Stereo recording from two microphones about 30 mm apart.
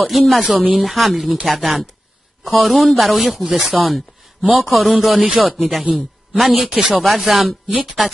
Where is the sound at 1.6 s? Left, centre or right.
Centre.